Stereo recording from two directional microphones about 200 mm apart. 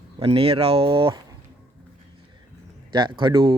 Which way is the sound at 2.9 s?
25° right (ahead or behind).